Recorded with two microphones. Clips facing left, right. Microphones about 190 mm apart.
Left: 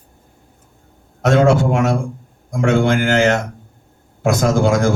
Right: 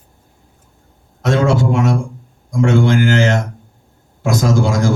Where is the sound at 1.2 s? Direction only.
55° left (ahead or behind).